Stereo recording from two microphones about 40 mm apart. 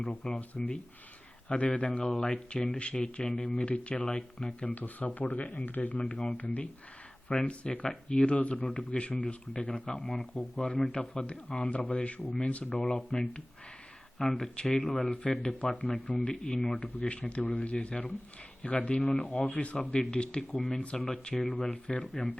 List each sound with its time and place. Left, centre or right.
0.3 s speech: left
4.6 s speech: left
6.0 s speech: left
6.3 s speech: left
7.3 s speech: left
8.6 s speech: left; by 10.7 s centre
10.8 s speech: centre; by 12.8 s left
13.1 s speech: left
14.2 s speech: centre
17.1 s speech: left
19.7 s speech: left
20.6 s speech: centre
21.7 s speech: left
22.0 s speech: centre